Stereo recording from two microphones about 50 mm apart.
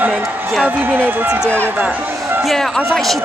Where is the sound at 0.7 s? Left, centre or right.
Right.